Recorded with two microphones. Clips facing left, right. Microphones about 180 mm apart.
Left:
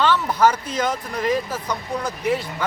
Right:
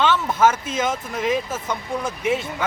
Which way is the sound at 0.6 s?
25° right (ahead or behind).